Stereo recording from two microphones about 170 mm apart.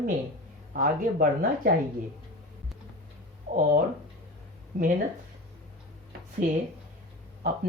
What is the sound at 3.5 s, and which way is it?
Speech, 50° right (ahead or behind).